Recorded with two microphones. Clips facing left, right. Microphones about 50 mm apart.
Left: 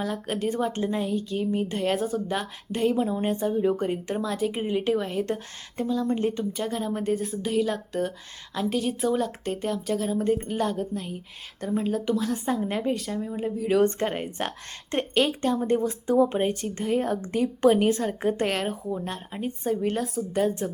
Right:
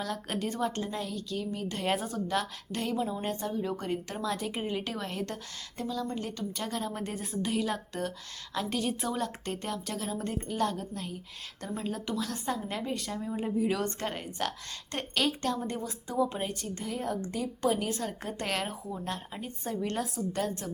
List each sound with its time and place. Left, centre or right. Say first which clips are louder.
0.4 s speech: left 6 dB; centre
1.8 s a woman's voice: left 2 dB; centre
2.2 s a woman's voice: left 2 dB; centre
4.2 s a woman's voice: left 6 dB; centre
4.6 s a woman's voice: left 9 dB; centre
6.1 s a woman's voice: left 10 dB; left
6.5 s a woman's voice: left 6 dB; centre
11.9 s a woman's voice: left 6 dB; centre
12.5 s speech: left 6 dB; left
12.9 s a woman's voice: left 6 dB; centre
13.7 s a woman's voice: left 11 dB; left
15.5 s a woman's voice: left 11 dB; left
18.4 s a woman's voice: left 6 dB; centre
20.6 s speech: left 7 dB; left